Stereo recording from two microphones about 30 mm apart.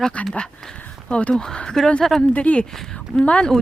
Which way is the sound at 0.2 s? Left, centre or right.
Left.